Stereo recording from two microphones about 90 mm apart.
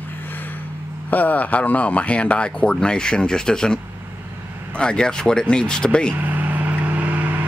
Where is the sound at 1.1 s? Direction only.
20° left (ahead or behind).